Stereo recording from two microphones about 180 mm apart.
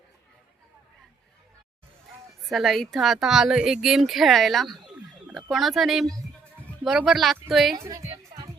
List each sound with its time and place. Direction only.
2.5 s speech: centre (ahead or behind)
7.8 s music: 15° right (ahead or behind)